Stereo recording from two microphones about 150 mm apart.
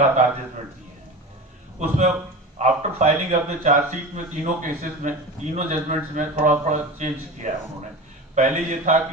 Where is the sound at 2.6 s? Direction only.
50° right (ahead or behind).